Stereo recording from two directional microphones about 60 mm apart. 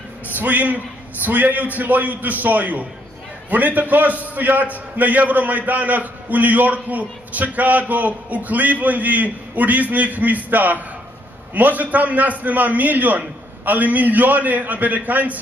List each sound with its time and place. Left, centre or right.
0.4 s a man's voice: right